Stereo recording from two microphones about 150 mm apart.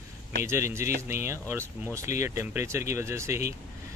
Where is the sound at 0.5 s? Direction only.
20° right (ahead or behind).